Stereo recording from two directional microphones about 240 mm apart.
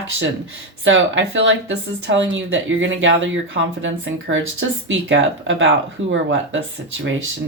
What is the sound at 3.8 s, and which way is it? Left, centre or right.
Speech, right.